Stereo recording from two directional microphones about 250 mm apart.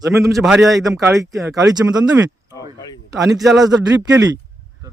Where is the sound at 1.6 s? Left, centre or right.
Centre.